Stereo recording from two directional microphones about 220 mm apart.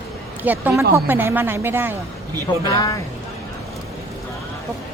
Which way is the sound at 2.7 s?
15° left (ahead or behind).